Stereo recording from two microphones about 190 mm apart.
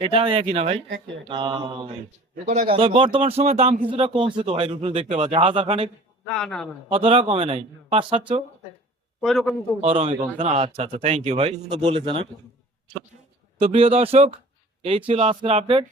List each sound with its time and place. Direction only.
0.0 s a man's voice: 30° right (ahead or behind)
6.2 s speech: 5° left (ahead or behind)
6.9 s a man's voice: 30° right (ahead or behind)
9.2 s speech: centre (ahead or behind)
9.8 s a man's voice: 30° right (ahead or behind)
13.6 s a man's voice: 30° right (ahead or behind)